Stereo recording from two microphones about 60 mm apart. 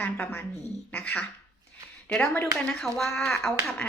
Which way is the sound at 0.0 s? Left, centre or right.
Left.